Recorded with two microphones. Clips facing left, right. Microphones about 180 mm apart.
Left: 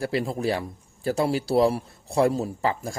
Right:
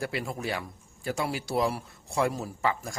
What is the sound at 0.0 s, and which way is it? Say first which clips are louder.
A man's voice: left 7 dB; 30° left (ahead or behind).